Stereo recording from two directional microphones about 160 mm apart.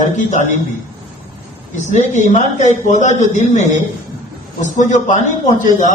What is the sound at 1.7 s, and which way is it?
A man's voice, 50° left (ahead or behind).